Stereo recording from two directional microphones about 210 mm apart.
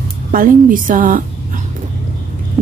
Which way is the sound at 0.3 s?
40° right (ahead or behind).